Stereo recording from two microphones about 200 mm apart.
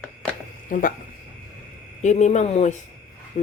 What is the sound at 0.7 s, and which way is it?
Speech, 45° left (ahead or behind).